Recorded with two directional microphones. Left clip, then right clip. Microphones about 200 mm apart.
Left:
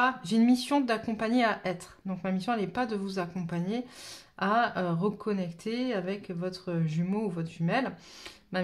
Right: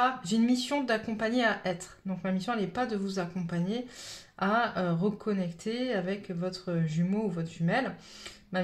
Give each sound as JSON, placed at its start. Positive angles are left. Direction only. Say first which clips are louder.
{"t": 0.0, "sound": "speech", "louder": "left 1 dB", "side_deg": 25}